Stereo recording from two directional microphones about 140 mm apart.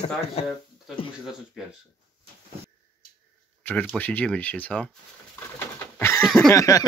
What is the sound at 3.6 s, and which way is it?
Speech, 10° left (ahead or behind).